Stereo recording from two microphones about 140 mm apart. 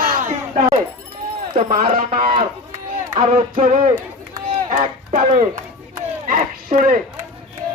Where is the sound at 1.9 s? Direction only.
75° right (ahead or behind).